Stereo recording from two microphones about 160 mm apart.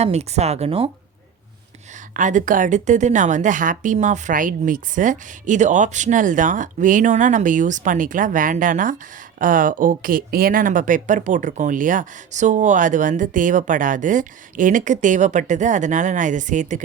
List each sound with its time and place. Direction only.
0.0 s speech: 40° right (ahead or behind)
2.1 s speech: 55° right (ahead or behind)